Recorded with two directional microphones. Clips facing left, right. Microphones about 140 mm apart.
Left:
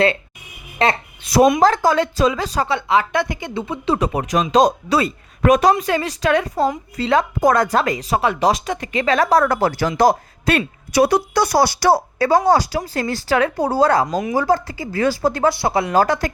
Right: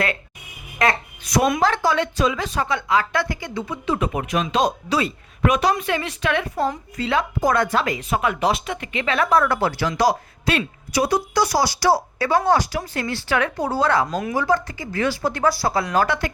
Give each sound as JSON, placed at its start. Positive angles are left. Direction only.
{"t": 0.8, "sound": "a woman's voice", "side_deg": 25}
{"t": 1.5, "sound": "speech", "side_deg": 40}
{"t": 3.9, "sound": "a woman's voice", "side_deg": 35}
{"t": 10.9, "sound": "speech", "side_deg": 65}
{"t": 12.5, "sound": "speech", "side_deg": 35}
{"t": 15.4, "sound": "speech", "side_deg": 25}